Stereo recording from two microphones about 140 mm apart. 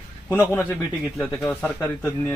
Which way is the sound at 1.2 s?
10° left (ahead or behind).